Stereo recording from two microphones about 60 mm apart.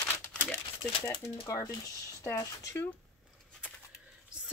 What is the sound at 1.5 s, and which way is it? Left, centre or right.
Speech, left.